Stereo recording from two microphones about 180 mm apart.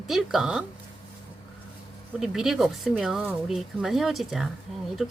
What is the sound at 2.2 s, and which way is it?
Speech, 5° right (ahead or behind).